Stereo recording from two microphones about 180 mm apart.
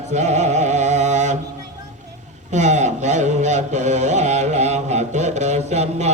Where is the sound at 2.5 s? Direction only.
40° right (ahead or behind).